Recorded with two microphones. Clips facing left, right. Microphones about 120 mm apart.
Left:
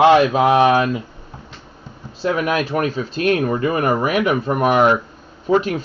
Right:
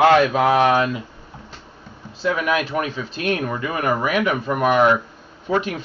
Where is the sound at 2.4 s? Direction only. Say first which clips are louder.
Left 2 dB; 40° left (ahead or behind).